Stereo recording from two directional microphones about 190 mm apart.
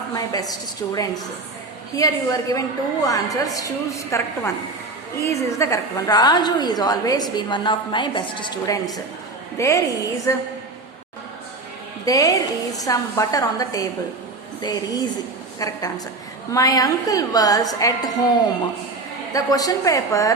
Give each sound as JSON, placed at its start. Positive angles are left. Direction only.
{"t": 0.1, "sound": "a woman's voice", "side_deg": 20}
{"t": 2.0, "sound": "a woman's voice", "side_deg": 20}
{"t": 12.0, "sound": "a woman's voice", "side_deg": 20}
{"t": 19.3, "sound": "a woman's voice", "side_deg": 20}